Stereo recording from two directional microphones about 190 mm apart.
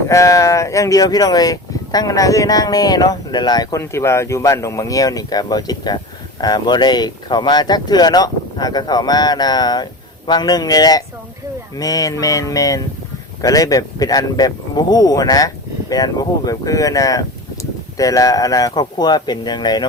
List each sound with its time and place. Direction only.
0.1 s speech: 15° left (ahead or behind)
11.8 s mantra: 20° left (ahead or behind)
13.4 s speech: 20° left (ahead or behind)